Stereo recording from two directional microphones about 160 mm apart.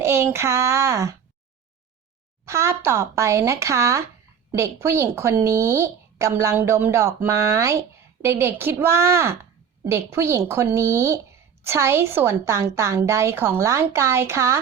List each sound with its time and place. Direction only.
0.0 s speech: 15° right (ahead or behind)
2.4 s speech: 15° right (ahead or behind)